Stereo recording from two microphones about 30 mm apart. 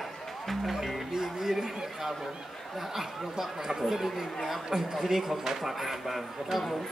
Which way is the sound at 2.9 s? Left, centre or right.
Centre.